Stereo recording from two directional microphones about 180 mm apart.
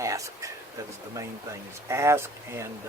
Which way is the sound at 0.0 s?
15° right (ahead or behind).